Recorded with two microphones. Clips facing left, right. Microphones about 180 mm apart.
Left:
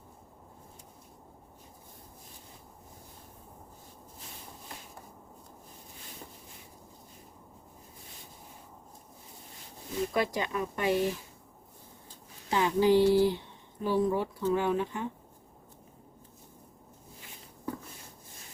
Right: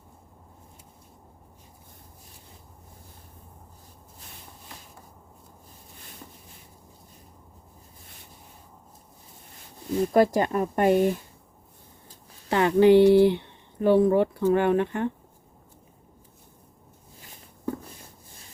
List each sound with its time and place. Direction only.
10.1 s speech: 45° right (ahead or behind)
12.5 s speech: 65° right (ahead or behind)